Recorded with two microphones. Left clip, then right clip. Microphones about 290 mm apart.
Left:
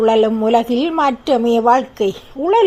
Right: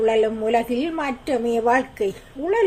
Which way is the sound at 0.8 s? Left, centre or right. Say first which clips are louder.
Left 9 dB; left.